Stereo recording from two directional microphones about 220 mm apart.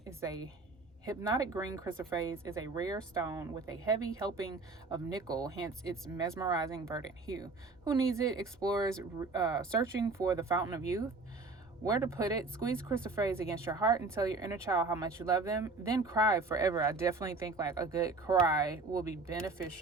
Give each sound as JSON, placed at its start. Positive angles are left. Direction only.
{"t": 0.0, "sound": "speech", "side_deg": -15}